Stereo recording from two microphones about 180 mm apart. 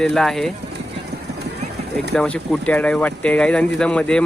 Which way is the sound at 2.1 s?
5° left (ahead or behind).